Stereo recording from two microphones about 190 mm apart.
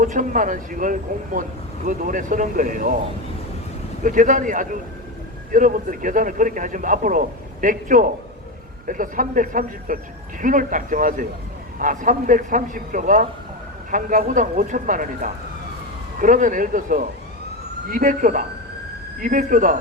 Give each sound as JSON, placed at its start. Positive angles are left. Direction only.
{"t": 0.0, "sound": "a man's voice", "side_deg": -45}
{"t": 4.0, "sound": "a man's voice", "side_deg": -45}